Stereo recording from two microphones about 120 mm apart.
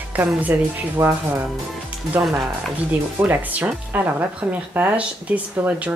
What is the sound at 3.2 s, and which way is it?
Speech, 15° right (ahead or behind).